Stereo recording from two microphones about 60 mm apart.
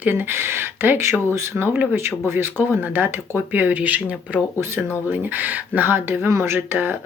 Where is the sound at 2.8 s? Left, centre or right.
Right.